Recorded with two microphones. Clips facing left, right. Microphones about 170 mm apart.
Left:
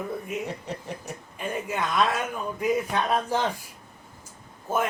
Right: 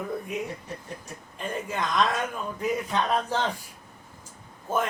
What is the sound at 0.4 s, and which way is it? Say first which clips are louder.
Speech: left 3 dB; 75° left (ahead or behind).